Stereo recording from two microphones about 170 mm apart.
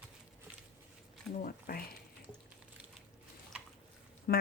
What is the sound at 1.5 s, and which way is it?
Speech, 60° left (ahead or behind).